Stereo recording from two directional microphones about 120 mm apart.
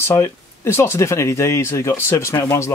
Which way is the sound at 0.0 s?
20° left (ahead or behind).